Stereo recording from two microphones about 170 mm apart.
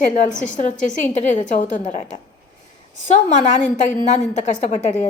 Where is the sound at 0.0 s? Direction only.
50° left (ahead or behind).